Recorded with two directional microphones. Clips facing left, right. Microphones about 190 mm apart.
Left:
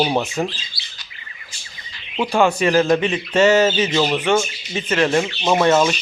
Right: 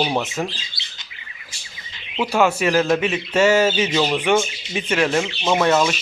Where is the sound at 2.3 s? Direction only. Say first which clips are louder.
Left 2 dB; 5° right (ahead or behind).